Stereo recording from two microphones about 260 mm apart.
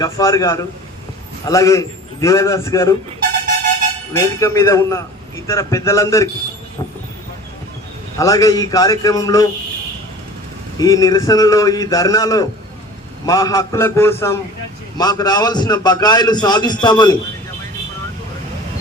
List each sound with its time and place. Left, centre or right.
0.0 s a man's voice: centre
4.1 s a man's voice: centre
8.2 s a man's voice: centre
10.8 s a man's voice: centre